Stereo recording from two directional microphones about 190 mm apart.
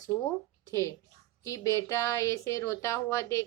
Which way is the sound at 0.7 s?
15° left (ahead or behind).